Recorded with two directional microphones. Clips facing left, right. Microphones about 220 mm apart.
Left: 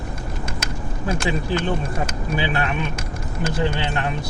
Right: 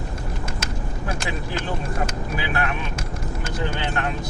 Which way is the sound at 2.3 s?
25° left (ahead or behind).